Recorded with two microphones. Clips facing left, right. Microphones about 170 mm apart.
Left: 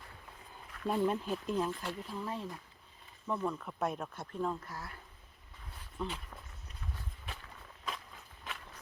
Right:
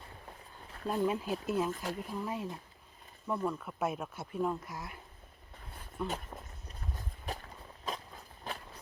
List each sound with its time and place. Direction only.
0.9 s speech: centre (ahead or behind)
1.7 s speech: 40° right (ahead or behind)
2.0 s speech: 10° right (ahead or behind)
6.0 s speech: 5° right (ahead or behind)
7.3 s a sound: 40° right (ahead or behind)